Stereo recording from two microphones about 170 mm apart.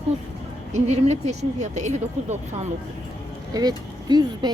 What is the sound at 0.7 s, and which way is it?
A woman's voice, 40° right (ahead or behind).